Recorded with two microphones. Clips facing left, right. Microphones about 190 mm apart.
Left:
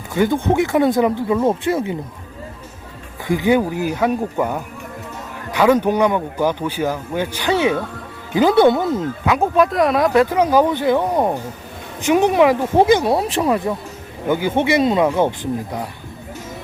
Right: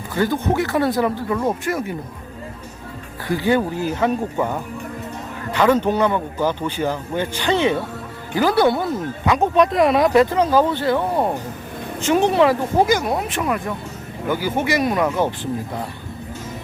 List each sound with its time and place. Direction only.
0.1 s speech: 20° left (ahead or behind)
3.2 s a man's voice: 15° left (ahead or behind)
8.4 s speech: 20° left (ahead or behind)
9.2 s speech: 5° left (ahead or behind)
10.2 s a man's voice: 10° left (ahead or behind)
12.8 s speech: 30° left (ahead or behind)